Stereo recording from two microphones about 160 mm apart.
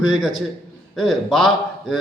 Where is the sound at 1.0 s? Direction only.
Centre (ahead or behind).